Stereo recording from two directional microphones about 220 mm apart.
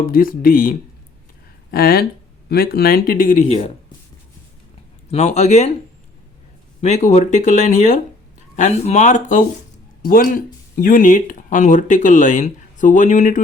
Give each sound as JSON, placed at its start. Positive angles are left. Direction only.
{"t": 0.0, "sound": "speech", "side_deg": 40}
{"t": 5.1, "sound": "speech", "side_deg": 30}
{"t": 6.8, "sound": "speech", "side_deg": 30}